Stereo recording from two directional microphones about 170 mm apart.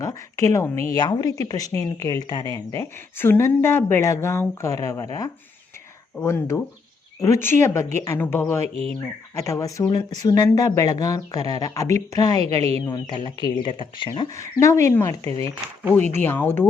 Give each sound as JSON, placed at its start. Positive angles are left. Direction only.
{"t": 0.0, "sound": "speech", "side_deg": 20}